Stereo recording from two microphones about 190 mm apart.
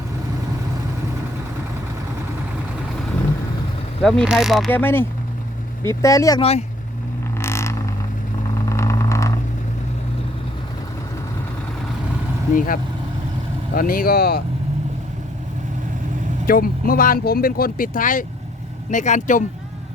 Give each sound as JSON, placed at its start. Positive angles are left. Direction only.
{"t": 4.0, "sound": "speech", "side_deg": 5}
{"t": 4.7, "sound": "speech", "side_deg": 10}
{"t": 6.4, "sound": "speech", "side_deg": 35}
{"t": 7.3, "sound": "vehicle", "side_deg": 15}
{"t": 12.5, "sound": "speech", "side_deg": 45}
{"t": 16.5, "sound": "speech", "side_deg": 50}